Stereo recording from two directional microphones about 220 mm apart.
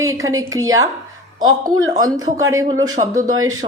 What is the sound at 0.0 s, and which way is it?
Speech, 15° right (ahead or behind).